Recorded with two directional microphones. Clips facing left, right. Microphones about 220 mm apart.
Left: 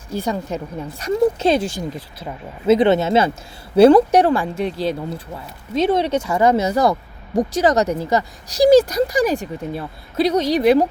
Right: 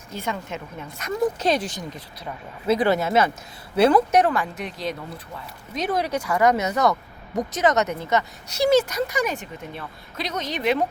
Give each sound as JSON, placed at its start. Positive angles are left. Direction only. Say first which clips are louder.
{"t": 0.1, "sound": "speech", "louder": "left 7 dB", "side_deg": 35}